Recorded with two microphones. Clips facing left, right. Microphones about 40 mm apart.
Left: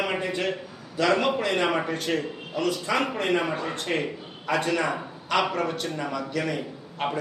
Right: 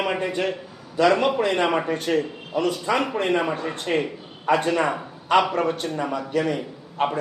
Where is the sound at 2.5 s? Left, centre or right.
Right.